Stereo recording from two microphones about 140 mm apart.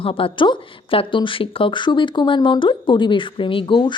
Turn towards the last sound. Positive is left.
turn(degrees=35)  # may be behind; listen again after turning